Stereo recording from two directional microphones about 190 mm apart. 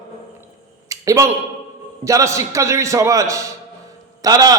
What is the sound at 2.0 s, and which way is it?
A man's voice, 15° right (ahead or behind).